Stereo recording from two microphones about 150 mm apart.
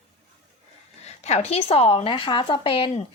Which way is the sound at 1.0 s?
45° left (ahead or behind).